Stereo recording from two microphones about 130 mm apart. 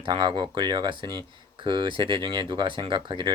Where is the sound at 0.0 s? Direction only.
40° right (ahead or behind).